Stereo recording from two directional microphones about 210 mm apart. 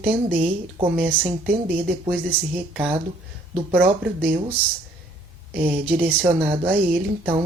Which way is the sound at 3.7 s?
10° right (ahead or behind).